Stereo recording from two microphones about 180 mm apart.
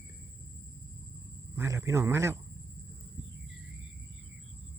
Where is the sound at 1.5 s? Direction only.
15° right (ahead or behind).